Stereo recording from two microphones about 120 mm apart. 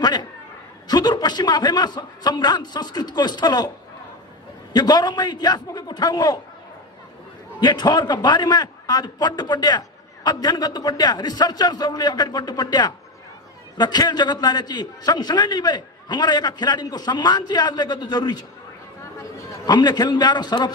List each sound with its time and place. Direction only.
0.0 s chatter: 35° left (ahead or behind)
0.8 s a man's voice: 35° left (ahead or behind)
4.7 s a man's voice: 35° left (ahead or behind)
7.6 s a man's voice: 35° left (ahead or behind)
19.6 s a man's voice: 35° left (ahead or behind)